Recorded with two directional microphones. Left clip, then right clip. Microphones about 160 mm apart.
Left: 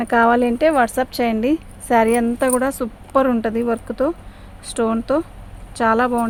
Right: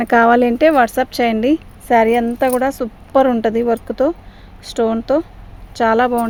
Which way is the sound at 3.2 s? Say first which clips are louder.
Right 4 dB; 40° right (ahead or behind).